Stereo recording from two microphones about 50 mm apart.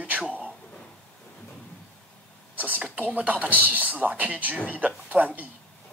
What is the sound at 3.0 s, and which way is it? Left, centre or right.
A man's voice, right.